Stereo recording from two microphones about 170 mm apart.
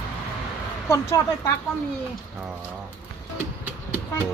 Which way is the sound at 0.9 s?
20° left (ahead or behind).